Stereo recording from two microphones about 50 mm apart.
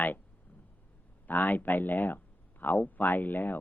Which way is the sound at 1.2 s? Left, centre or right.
Left.